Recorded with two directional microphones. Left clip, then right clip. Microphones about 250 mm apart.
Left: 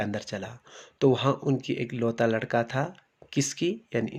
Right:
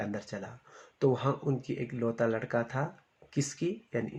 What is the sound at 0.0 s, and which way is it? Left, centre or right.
Speech, left.